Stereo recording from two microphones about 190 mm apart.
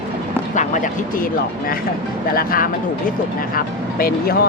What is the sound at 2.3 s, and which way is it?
Speech, 45° left (ahead or behind).